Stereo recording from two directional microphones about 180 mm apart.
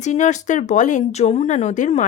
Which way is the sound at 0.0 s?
40° left (ahead or behind).